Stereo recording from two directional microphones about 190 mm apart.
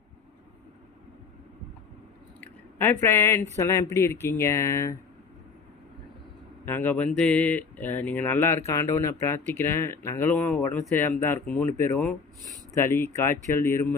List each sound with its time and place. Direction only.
2.4 s a sound: 10° left (ahead or behind)
3.6 s speech: 15° left (ahead or behind)
6.7 s speech: 10° left (ahead or behind)